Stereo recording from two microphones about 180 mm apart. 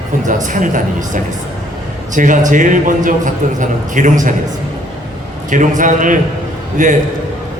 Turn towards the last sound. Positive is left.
turn(degrees=-45)  # may be behind; listen again after turning